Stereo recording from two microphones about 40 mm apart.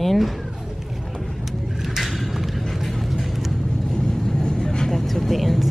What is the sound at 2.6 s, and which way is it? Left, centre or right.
Music, centre.